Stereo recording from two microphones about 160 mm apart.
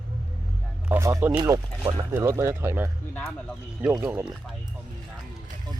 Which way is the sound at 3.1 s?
5° left (ahead or behind).